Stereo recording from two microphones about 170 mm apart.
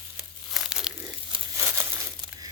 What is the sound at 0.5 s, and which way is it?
Crumpling, centre (ahead or behind).